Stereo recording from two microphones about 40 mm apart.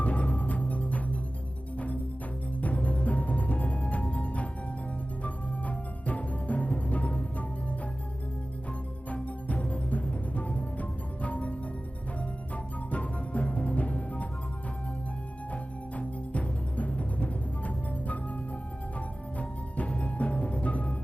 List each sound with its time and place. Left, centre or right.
0.0 s music: left
2.6 s music: left
9.0 s music: left
12.9 s music: left
16.0 s music: left